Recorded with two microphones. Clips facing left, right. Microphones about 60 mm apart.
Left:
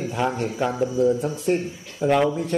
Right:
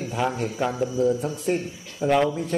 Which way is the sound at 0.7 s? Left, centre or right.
Centre.